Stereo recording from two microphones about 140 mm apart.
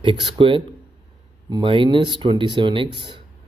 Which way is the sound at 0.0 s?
35° right (ahead or behind).